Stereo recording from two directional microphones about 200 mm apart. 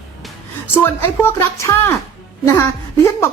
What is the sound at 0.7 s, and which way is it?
Speech, 10° left (ahead or behind).